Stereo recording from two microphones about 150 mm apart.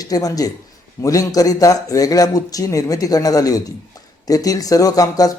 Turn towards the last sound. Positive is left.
turn(degrees=25)  # may be behind; listen again after turning